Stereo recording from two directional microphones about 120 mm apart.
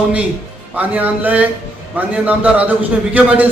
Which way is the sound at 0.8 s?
15° right (ahead or behind).